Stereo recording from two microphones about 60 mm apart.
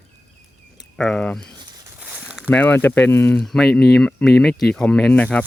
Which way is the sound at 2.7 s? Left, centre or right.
Left.